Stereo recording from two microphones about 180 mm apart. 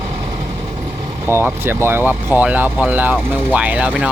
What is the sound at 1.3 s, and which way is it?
Speech, 15° right (ahead or behind).